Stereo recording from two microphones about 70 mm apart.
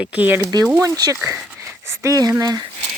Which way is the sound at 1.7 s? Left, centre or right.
Right.